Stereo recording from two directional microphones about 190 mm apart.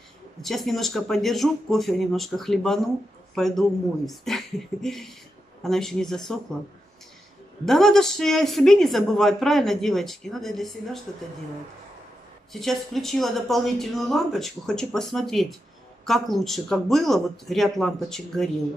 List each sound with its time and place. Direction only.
0.4 s speech: centre (ahead or behind)
7.6 s speech: centre (ahead or behind)
12.5 s speech: centre (ahead or behind)